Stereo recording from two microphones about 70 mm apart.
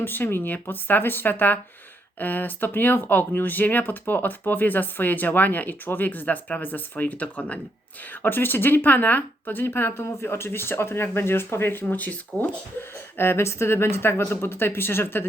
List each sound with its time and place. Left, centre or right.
0.0 s speech: left
13.1 s speech: left